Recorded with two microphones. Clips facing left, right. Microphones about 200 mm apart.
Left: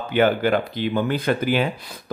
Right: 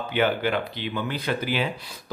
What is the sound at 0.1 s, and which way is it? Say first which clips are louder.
Speech: left 5 dB; 45° left (ahead or behind).